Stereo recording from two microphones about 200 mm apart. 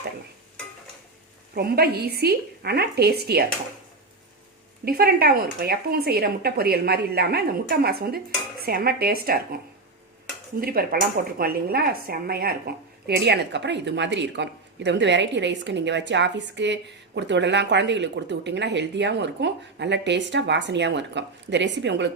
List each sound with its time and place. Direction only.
1.5 s speech: 50° right (ahead or behind)
4.9 s speech: 50° right (ahead or behind)
10.6 s a woman's voice: 50° right (ahead or behind)